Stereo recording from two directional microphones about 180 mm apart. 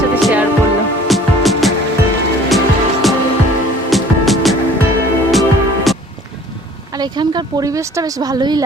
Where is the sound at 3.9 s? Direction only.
Centre (ahead or behind).